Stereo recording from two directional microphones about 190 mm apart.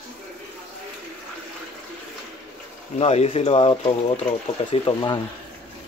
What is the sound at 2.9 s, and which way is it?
Speech, 35° left (ahead or behind).